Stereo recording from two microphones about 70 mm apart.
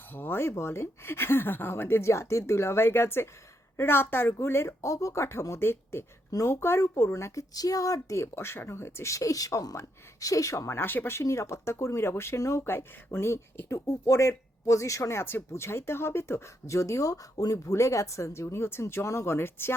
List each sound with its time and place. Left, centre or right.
0.1 s speech: left
7.5 s speech: left